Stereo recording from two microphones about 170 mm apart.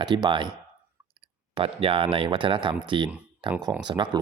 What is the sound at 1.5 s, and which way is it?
Speech, 35° right (ahead or behind).